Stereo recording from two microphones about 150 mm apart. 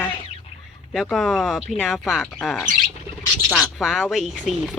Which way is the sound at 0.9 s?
Centre (ahead or behind).